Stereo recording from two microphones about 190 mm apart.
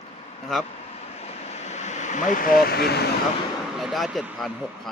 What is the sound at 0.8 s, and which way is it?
Vehicle, 35° left (ahead or behind).